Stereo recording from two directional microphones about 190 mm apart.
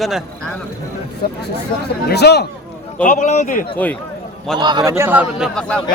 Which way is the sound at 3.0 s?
40° left (ahead or behind).